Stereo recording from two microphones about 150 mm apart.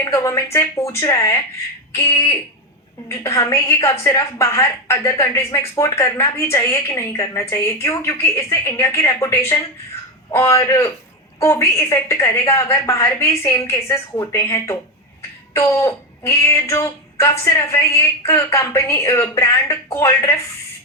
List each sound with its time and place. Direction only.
0.0 s a woman's voice: 20° left (ahead or behind)